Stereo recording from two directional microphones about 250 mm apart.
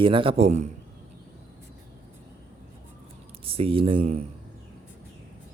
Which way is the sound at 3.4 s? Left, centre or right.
Right.